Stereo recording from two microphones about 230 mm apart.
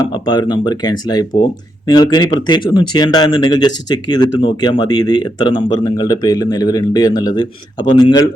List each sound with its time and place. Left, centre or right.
0.1 s speech: centre